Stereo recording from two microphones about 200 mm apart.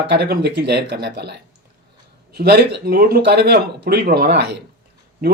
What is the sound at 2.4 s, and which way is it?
A man's voice, 50° right (ahead or behind).